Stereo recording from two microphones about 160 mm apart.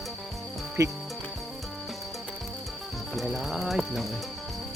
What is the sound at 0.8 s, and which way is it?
Music, 20° right (ahead or behind).